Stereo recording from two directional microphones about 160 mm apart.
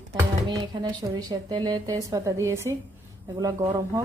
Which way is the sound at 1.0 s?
20° right (ahead or behind).